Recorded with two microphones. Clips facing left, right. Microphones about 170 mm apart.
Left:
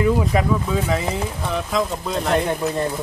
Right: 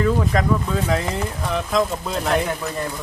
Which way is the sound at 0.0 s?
10° left (ahead or behind).